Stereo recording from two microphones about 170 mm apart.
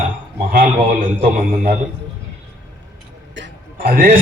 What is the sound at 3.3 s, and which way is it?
Music, 80° right.